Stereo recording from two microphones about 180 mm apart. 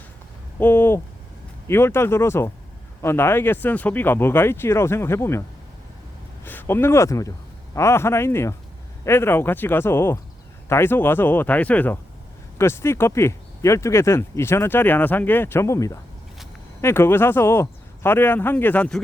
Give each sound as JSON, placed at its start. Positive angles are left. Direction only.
{"t": 0.6, "sound": "speech", "side_deg": 10}
{"t": 6.4, "sound": "speech", "side_deg": 10}